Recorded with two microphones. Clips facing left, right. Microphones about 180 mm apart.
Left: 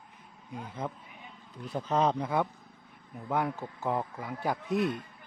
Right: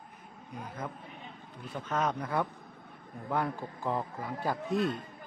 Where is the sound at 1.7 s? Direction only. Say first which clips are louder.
Left 4 dB; 30° left (ahead or behind).